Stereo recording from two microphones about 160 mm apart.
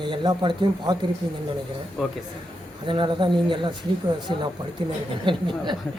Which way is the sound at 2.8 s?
30° right (ahead or behind).